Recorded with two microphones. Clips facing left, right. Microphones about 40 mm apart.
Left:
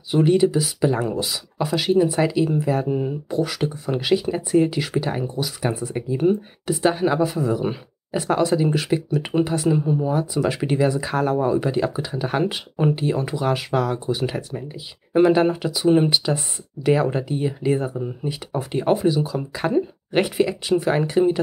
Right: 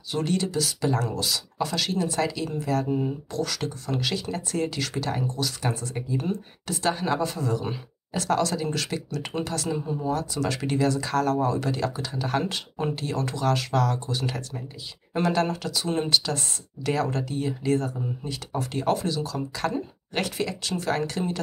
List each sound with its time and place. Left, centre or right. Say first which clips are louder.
0.1 s speech: left 9 dB; centre